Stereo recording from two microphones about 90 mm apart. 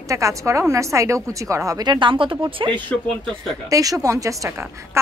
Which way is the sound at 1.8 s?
60° right (ahead or behind).